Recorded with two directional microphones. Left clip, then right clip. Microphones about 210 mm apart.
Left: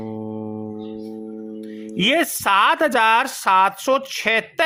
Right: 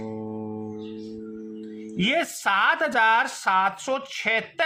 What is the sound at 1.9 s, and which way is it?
Speech, 45° left (ahead or behind).